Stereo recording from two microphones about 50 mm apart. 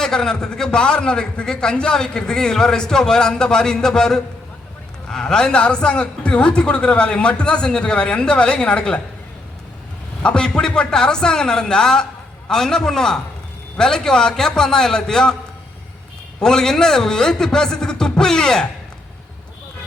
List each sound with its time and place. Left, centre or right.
0.0 s a man's voice: centre
10.2 s a man's voice: centre
16.4 s a man's voice: centre